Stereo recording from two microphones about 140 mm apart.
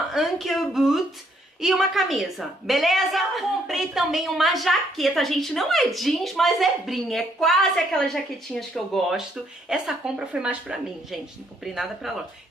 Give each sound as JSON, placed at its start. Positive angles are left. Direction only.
{"t": 0.1, "sound": "a woman's voice", "side_deg": 0}